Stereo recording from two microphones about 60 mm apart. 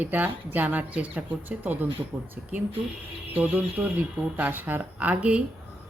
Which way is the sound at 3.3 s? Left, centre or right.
Right.